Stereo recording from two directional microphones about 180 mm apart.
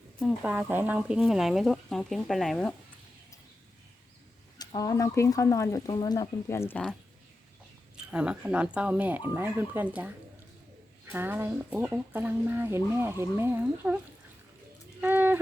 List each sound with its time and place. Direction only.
0.2 s speech: 5° right (ahead or behind)
4.5 s speech: 20° left (ahead or behind)
7.9 s speech: 5° right (ahead or behind)
15.0 s a sound: 10° right (ahead or behind)